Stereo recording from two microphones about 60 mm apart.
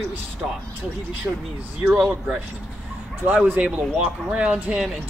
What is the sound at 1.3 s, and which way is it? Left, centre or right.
Speech, right.